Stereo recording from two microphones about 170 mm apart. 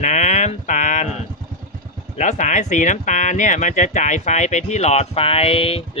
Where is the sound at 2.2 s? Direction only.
45° left (ahead or behind).